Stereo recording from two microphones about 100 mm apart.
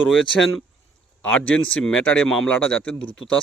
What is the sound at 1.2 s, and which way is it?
A man's voice, 15° left (ahead or behind).